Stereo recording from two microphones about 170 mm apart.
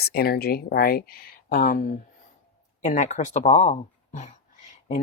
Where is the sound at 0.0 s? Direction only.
65° left (ahead or behind).